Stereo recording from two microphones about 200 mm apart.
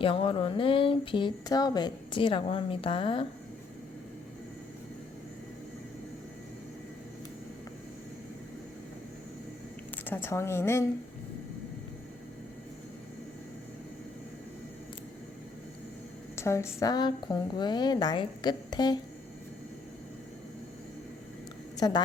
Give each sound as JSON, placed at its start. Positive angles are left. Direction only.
{"t": 0.0, "sound": "speech", "side_deg": 25}
{"t": 10.1, "sound": "a woman's voice", "side_deg": 10}
{"t": 16.3, "sound": "speech", "side_deg": 15}
{"t": 21.8, "sound": "a woman's voice", "side_deg": 20}